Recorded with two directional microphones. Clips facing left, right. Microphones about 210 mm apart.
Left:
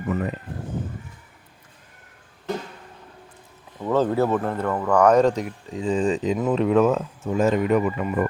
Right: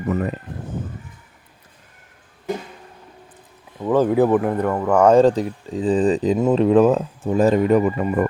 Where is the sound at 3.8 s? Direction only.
10° right (ahead or behind); by 8.3 s 40° right (ahead or behind).